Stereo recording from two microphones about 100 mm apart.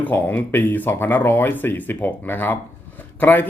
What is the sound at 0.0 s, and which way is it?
A man's voice, 15° left (ahead or behind).